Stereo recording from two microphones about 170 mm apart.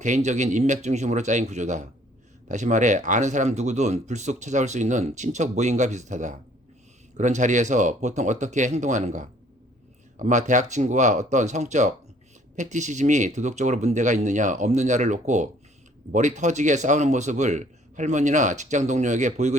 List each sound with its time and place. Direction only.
0.0 s speech: 45° right (ahead or behind)